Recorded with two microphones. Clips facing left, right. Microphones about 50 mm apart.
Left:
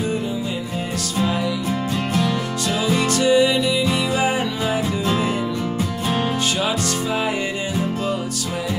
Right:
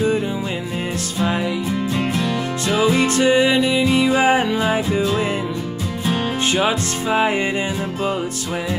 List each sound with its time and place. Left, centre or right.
1.2 s music: right
2.7 s music: right
6.5 s music: right